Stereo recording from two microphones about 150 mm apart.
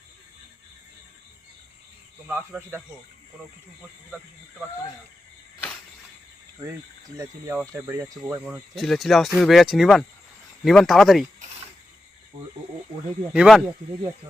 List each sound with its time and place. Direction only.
2.2 s speech: 10° right (ahead or behind)
7.2 s speech: 20° right (ahead or behind)
8.7 s speech: centre (ahead or behind)
13.3 s speech: 5° right (ahead or behind)